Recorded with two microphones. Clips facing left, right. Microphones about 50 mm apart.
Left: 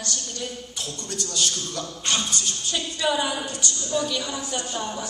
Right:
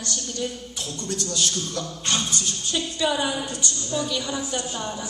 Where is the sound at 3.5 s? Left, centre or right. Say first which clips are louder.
Even; right.